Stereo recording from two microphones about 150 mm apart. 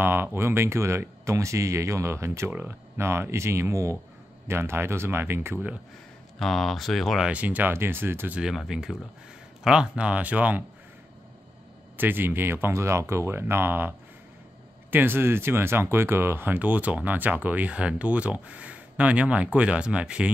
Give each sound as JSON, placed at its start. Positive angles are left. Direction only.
{"t": 0.0, "sound": "speech", "side_deg": -15}
{"t": 6.4, "sound": "speech", "side_deg": 0}
{"t": 12.0, "sound": "speech", "side_deg": -15}